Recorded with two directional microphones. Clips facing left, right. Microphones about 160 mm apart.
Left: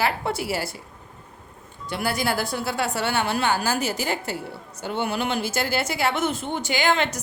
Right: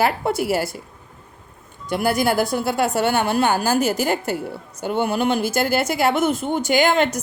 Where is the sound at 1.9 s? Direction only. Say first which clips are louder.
Right 6 dB; 45° right (ahead or behind).